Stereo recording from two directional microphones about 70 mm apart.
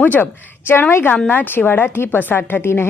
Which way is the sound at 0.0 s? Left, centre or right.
Left.